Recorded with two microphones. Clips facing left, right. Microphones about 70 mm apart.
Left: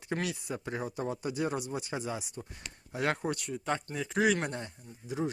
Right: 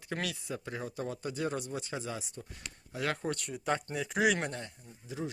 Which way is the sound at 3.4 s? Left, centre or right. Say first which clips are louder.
Even; centre.